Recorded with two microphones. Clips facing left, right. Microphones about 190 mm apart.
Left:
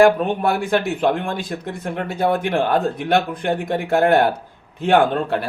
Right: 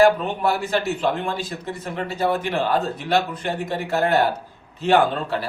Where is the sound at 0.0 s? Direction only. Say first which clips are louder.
Left 2 dB; 55° left (ahead or behind).